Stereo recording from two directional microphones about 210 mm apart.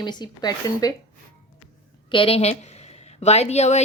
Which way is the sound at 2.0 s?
25° left (ahead or behind).